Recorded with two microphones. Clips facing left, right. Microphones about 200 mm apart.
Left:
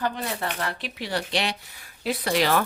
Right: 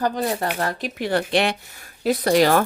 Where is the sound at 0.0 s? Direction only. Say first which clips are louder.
Right 6 dB; 40° right (ahead or behind).